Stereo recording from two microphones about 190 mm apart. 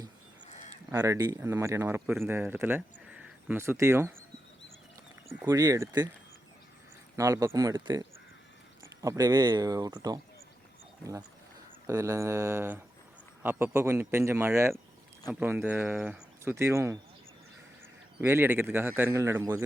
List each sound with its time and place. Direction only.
0.4 s a sound: 35° left (ahead or behind)
0.9 s speech: 15° right (ahead or behind)
5.3 s speech: 15° right (ahead or behind)
7.2 s speech: 15° right (ahead or behind)
11.9 s speech: 15° right (ahead or behind)
18.2 s speech: 10° right (ahead or behind)